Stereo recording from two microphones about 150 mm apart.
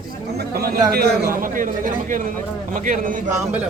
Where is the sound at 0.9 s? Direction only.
80° right; by 3.6 s 60° right (ahead or behind).